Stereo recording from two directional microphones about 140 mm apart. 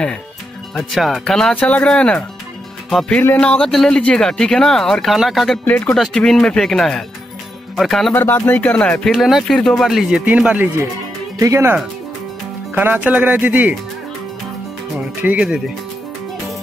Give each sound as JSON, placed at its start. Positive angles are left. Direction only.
{"t": 0.7, "sound": "speech", "side_deg": 0}
{"t": 8.1, "sound": "speech", "side_deg": 15}
{"t": 11.3, "sound": "speech", "side_deg": -20}
{"t": 12.7, "sound": "speech", "side_deg": -10}
{"t": 15.2, "sound": "speech", "side_deg": -10}